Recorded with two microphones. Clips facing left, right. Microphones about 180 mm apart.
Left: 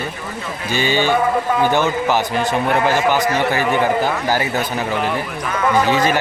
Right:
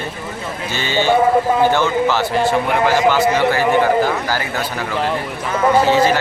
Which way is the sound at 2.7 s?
15° right (ahead or behind).